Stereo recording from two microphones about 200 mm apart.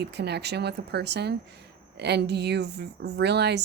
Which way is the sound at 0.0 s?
55° right (ahead or behind).